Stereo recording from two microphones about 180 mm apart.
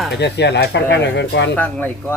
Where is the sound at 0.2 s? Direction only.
70° left (ahead or behind).